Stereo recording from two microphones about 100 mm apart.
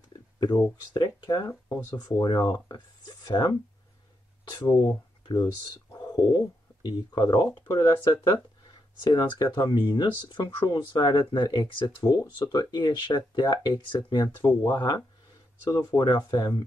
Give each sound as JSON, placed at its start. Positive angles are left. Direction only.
{"t": 0.4, "sound": "speech", "side_deg": 45}
{"t": 1.5, "sound": "speech", "side_deg": 30}
{"t": 9.0, "sound": "speech", "side_deg": 45}
{"t": 16.0, "sound": "speech", "side_deg": 45}